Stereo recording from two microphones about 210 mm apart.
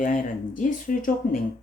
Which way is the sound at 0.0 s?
40° left (ahead or behind).